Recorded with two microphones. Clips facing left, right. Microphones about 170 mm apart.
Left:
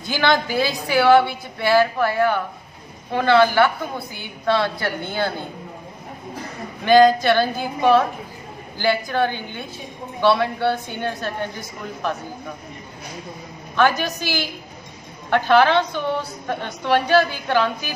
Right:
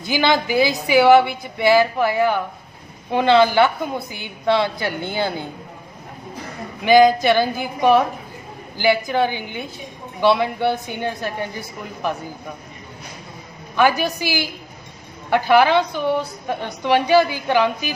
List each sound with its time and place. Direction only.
0.0 s a woman's voice: 10° right (ahead or behind)
6.8 s a woman's voice: 10° right (ahead or behind)
13.7 s a woman's voice: 10° right (ahead or behind)